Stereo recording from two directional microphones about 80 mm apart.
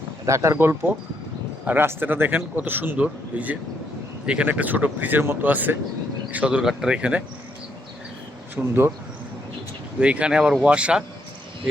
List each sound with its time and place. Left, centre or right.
0.3 s a man's voice: right; by 7.2 s centre
8.5 s a man's voice: right
10.0 s speech: centre